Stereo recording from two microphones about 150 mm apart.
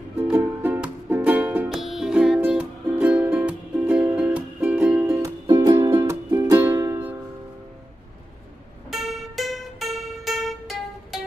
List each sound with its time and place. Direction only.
0.2 s music: 15° right (ahead or behind)
5.5 s music: 30° right (ahead or behind)
5.9 s music: 20° right (ahead or behind)
8.9 s music: centre (ahead or behind)